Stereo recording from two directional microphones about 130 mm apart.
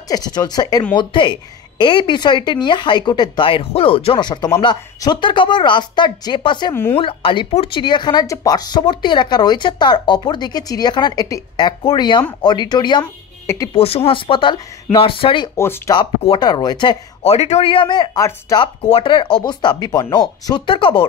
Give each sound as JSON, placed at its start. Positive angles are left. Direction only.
{"t": 0.1, "sound": "speech", "side_deg": 30}
{"t": 6.7, "sound": "a woman's voice", "side_deg": 15}
{"t": 7.0, "sound": "speech", "side_deg": 40}
{"t": 13.0, "sound": "speech", "side_deg": 20}
{"t": 13.7, "sound": "speech", "side_deg": 50}
{"t": 15.5, "sound": "speech", "side_deg": 20}
{"t": 15.9, "sound": "speech", "side_deg": 45}
{"t": 17.2, "sound": "speech", "side_deg": 55}
{"t": 18.8, "sound": "speech", "side_deg": 45}